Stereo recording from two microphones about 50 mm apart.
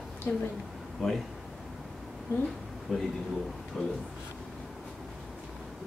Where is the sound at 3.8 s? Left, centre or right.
Centre.